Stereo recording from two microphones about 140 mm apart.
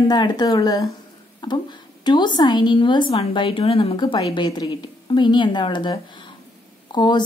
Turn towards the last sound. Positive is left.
turn(degrees=30)  # may be behind; listen again after turning